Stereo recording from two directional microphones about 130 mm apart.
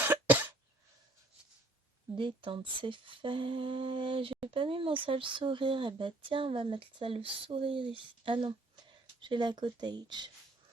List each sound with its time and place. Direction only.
0.0 s cough: 15° right (ahead or behind)
2.1 s speech: 40° right (ahead or behind)